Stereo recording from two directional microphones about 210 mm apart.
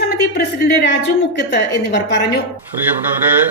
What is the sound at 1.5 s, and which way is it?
Speech, 55° left (ahead or behind).